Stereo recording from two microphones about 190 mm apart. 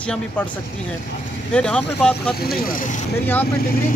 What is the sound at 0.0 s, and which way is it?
Speech, 5° left (ahead or behind).